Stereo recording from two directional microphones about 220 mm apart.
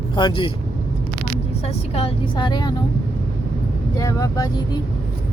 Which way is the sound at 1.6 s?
25° left (ahead or behind).